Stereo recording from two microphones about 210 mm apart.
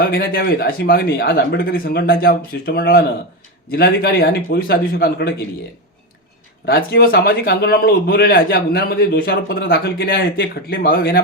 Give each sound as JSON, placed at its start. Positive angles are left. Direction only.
{"t": 0.0, "sound": "a man's voice", "side_deg": 45}
{"t": 6.7, "sound": "a man's voice", "side_deg": 45}